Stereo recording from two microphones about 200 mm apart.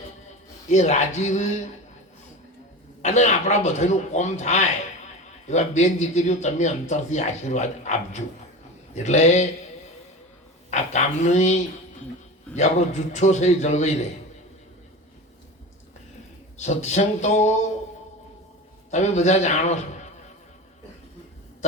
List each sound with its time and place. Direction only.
0.7 s a man's voice: 35° left (ahead or behind)
3.0 s a man's voice: 35° left (ahead or behind)
10.7 s a man's voice: 35° left (ahead or behind)
16.6 s a man's voice: 35° left (ahead or behind)
18.9 s a man's voice: 35° left (ahead or behind)